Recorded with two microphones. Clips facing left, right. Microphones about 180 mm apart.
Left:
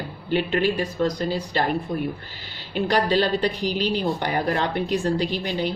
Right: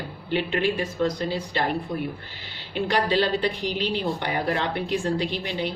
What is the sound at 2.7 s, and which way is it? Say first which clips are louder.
A woman's voice: left 2 dB; 40° left (ahead or behind).